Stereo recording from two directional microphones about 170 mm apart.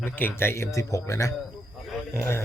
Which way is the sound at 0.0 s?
10° left (ahead or behind).